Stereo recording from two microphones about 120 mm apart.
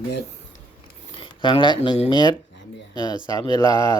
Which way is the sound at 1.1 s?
45° left (ahead or behind).